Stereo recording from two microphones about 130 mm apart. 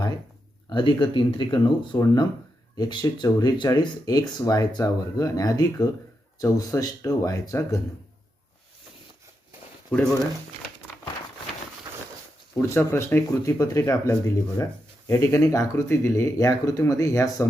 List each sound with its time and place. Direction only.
0.7 s speech: 40° left (ahead or behind)
9.9 s speech: 5° left (ahead or behind)
12.6 s speech: 20° left (ahead or behind)